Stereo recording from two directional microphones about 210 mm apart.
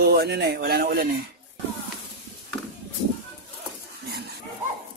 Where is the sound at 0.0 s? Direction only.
50° right (ahead or behind).